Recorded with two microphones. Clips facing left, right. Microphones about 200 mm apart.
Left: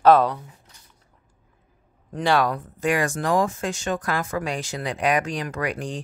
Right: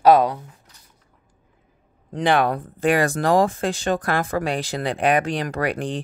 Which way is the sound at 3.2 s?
35° right (ahead or behind).